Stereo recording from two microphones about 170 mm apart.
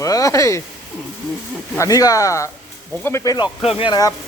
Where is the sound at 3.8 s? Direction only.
25° left (ahead or behind).